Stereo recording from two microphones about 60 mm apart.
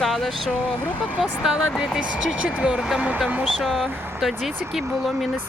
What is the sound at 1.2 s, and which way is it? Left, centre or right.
Speech, centre.